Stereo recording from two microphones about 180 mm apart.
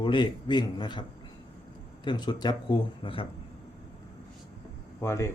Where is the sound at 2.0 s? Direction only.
25° left (ahead or behind).